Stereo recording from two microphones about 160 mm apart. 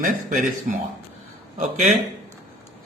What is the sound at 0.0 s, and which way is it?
Speech, 55° right (ahead or behind).